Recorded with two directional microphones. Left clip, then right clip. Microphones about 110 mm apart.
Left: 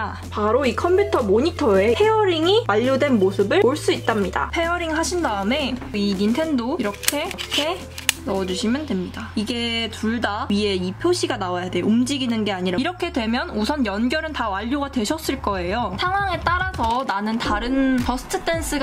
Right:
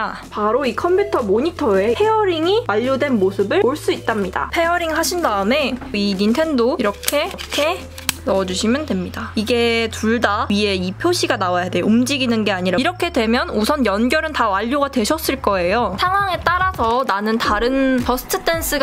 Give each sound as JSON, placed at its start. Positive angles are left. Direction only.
{"t": 0.4, "sound": "speech", "side_deg": 5}
{"t": 4.6, "sound": "speech", "side_deg": -35}
{"t": 8.3, "sound": "speech", "side_deg": -40}